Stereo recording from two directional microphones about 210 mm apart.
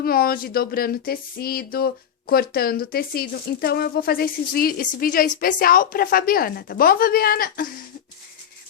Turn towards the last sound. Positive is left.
turn(degrees=45)  # may be behind; listen again after turning